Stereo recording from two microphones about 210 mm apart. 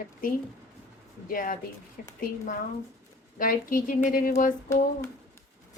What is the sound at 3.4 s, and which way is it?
Speech, 40° left (ahead or behind).